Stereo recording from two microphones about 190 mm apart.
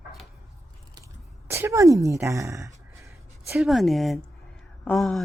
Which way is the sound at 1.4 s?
15° right (ahead or behind).